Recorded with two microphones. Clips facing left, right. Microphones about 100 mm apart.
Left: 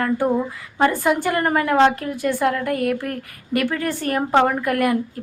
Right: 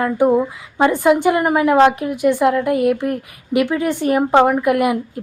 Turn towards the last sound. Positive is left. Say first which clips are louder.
# right 4 dB
turn(degrees=-15)  # may be behind; listen again after turning